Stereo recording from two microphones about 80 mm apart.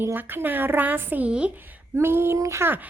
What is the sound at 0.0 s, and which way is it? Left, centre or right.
A woman's voice, right.